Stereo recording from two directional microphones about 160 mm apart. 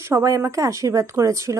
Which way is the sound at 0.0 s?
20° right (ahead or behind).